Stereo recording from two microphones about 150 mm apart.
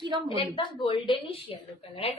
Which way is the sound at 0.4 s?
35° left (ahead or behind).